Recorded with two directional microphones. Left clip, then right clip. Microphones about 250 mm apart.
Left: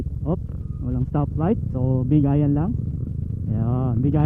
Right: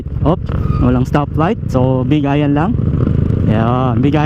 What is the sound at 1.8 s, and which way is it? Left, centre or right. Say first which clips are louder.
Speech: right 11 dB; right.